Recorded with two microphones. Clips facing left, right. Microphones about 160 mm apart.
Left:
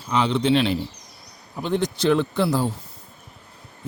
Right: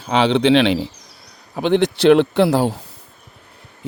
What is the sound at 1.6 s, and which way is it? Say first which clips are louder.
Speech: right 7 dB; 80° right.